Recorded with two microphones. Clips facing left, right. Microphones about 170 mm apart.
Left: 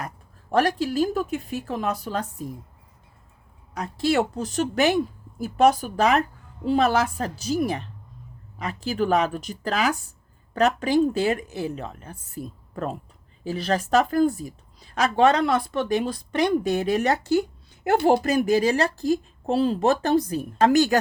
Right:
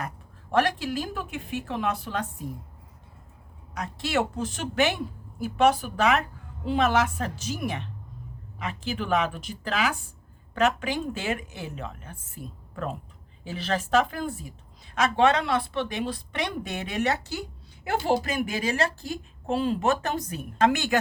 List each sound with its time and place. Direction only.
0.5 s speech: 40° left (ahead or behind)
3.8 s speech: 40° left (ahead or behind)